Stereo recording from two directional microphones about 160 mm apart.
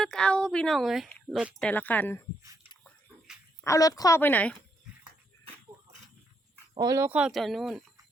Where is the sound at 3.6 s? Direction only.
20° left (ahead or behind).